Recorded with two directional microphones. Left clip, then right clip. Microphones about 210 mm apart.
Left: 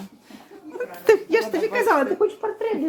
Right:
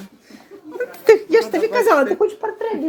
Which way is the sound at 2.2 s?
25° right (ahead or behind).